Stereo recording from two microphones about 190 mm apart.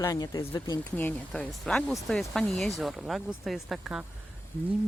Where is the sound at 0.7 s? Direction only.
10° left (ahead or behind).